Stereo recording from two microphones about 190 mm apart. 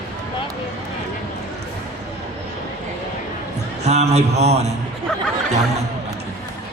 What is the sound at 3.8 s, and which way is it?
Speech, 35° right (ahead or behind).